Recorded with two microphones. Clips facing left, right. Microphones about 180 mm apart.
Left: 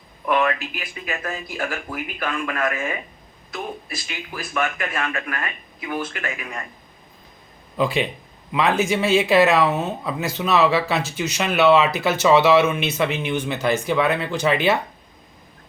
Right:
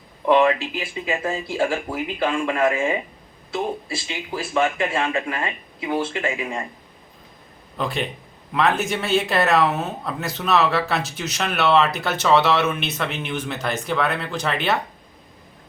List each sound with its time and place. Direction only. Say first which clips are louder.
0.3 s speech: right 4 dB; 25° right (ahead or behind)
7.8 s speech: left 4 dB; centre (ahead or behind)